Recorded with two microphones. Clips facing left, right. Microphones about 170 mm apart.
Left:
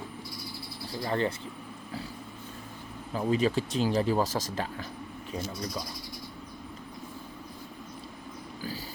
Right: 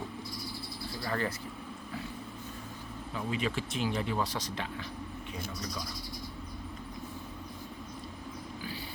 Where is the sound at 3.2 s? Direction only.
35° left (ahead or behind).